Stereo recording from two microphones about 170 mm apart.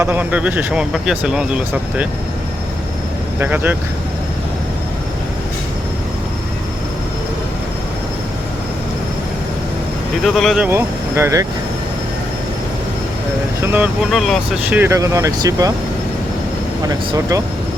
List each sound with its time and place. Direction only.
0.0 s speech: 10° right (ahead or behind)
3.4 s speech: 10° right (ahead or behind)
10.2 s speech: centre (ahead or behind)
10.7 s speech: 15° right (ahead or behind)
13.6 s speech: 10° right (ahead or behind)
14.1 s speech: centre (ahead or behind); by 15.7 s 20° right (ahead or behind)
16.8 s speech: 20° right (ahead or behind)